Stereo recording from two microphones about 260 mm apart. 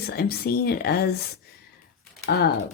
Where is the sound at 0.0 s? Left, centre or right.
Left.